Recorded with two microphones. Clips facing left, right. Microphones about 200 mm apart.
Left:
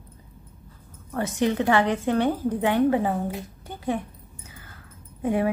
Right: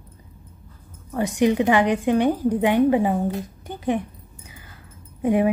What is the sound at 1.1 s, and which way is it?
Speech, 15° right (ahead or behind).